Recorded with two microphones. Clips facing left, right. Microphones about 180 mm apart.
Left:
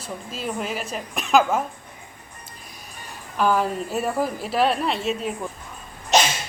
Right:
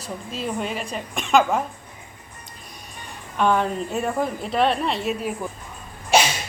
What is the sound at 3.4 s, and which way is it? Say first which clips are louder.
Speech: right 1 dB; 5° left (ahead or behind).